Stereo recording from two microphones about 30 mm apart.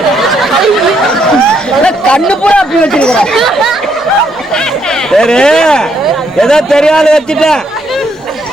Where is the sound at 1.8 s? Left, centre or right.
Left.